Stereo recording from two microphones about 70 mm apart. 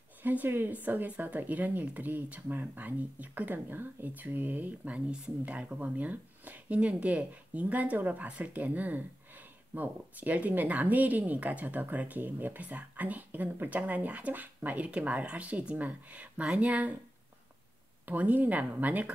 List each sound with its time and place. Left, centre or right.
0.2 s speech: right
18.0 s speech: right